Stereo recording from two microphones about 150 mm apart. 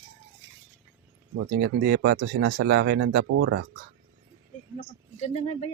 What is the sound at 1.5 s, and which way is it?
Speech, 90° right.